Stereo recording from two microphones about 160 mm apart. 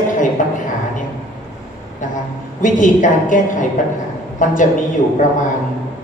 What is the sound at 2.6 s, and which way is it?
Speech, 55° left (ahead or behind).